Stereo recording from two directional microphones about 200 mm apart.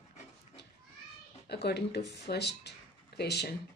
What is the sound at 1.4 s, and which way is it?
Speech, 55° left (ahead or behind).